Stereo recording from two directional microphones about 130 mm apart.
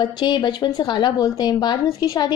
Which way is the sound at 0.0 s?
35° left (ahead or behind).